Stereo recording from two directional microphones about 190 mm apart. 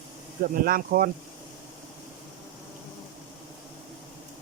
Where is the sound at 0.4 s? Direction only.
50° right (ahead or behind).